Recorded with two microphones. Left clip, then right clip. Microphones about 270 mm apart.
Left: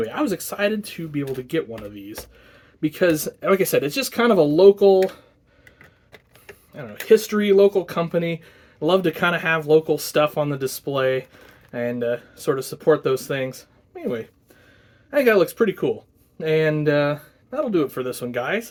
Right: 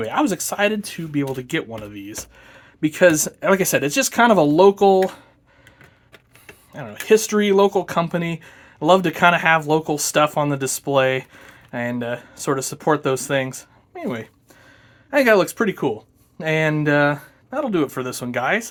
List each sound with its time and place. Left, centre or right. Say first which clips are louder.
0.0 s speech: right 3 dB; right
6.7 s speech: even; right